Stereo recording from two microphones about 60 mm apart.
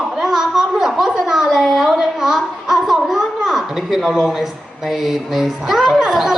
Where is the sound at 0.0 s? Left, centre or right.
Centre.